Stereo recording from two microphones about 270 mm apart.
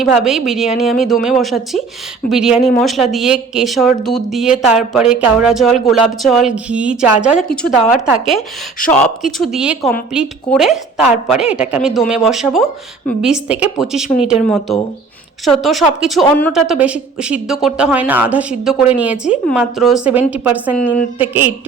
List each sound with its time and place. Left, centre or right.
0.0 s speech: centre
21.2 s mantra: centre